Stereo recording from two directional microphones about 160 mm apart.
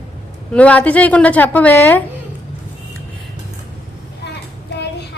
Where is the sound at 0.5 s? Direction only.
10° left (ahead or behind).